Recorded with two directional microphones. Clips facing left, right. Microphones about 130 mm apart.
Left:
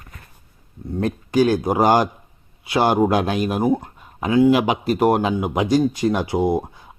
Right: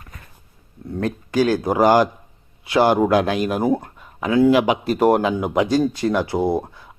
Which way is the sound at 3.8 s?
20° left (ahead or behind).